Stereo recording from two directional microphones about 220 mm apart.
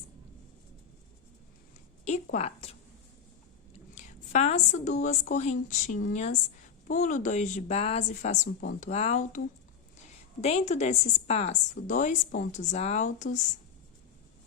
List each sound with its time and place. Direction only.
2.0 s a sound: 30° left (ahead or behind)
3.9 s a woman's voice: 35° left (ahead or behind)
10.4 s a woman's voice: 30° left (ahead or behind)